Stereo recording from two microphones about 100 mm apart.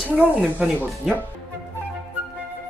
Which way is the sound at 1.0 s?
5° right (ahead or behind).